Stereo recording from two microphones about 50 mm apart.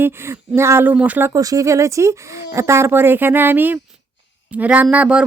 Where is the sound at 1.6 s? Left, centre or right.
Right.